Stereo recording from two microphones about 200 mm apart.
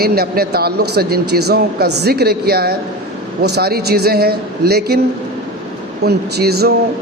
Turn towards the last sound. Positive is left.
turn(degrees=-55)  # may be behind; listen again after turning